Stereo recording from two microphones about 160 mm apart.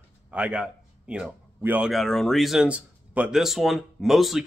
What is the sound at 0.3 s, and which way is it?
A man's voice, 5° right (ahead or behind).